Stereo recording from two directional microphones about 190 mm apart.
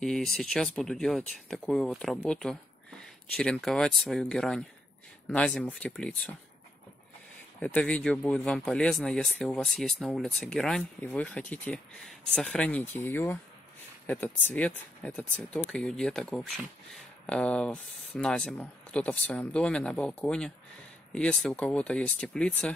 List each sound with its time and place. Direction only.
0.0 s speech: centre (ahead or behind)
7.6 s speech: 5° left (ahead or behind)